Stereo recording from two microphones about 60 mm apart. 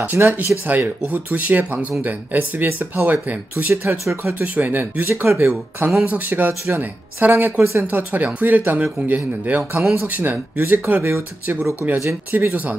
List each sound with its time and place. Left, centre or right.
0.0 s speech: right
6.0 s speech: right
11.0 s speech: right
11.8 s speech: right